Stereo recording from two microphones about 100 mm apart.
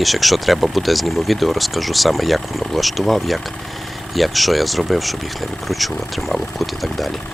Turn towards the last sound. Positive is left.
turn(degrees=0)  # may be behind; listen again after turning